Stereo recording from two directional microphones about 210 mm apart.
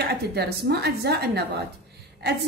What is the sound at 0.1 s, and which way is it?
Speech, 50° right (ahead or behind).